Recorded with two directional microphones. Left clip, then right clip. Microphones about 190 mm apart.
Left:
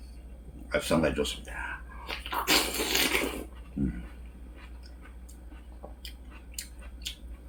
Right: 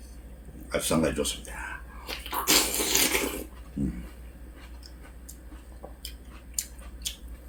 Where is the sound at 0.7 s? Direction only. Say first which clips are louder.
Even; 5° right (ahead or behind).